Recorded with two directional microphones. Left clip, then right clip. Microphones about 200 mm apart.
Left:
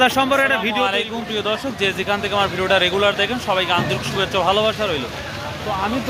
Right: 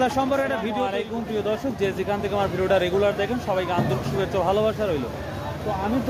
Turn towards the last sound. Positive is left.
turn(degrees=0)  # may be behind; listen again after turning